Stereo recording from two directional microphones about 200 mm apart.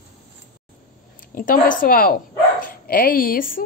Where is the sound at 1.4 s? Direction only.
40° left (ahead or behind).